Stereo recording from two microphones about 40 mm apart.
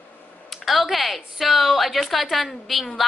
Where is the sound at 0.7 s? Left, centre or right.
Centre.